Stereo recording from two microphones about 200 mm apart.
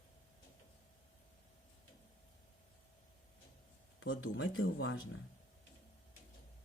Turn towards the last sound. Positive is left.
turn(degrees=90)